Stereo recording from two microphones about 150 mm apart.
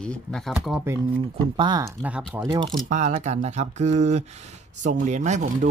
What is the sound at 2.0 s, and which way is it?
Speech, 10° right (ahead or behind).